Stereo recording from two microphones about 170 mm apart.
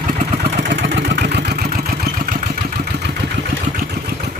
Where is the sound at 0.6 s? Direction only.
90° right; by 3.1 s 70° right (ahead or behind).